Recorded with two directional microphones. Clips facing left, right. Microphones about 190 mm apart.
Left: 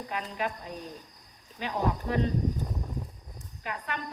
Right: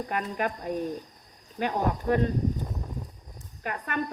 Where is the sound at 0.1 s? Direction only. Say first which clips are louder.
Right 2 dB; 50° right (ahead or behind).